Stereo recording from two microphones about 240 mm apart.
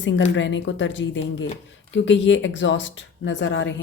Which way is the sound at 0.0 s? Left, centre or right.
Left.